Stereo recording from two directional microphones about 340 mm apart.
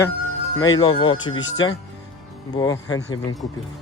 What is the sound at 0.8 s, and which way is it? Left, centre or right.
Speech, centre.